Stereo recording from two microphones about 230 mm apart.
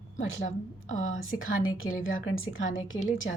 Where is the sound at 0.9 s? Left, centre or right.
Left.